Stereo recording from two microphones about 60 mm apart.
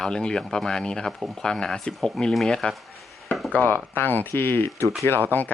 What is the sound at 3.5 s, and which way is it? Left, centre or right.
Speech, left.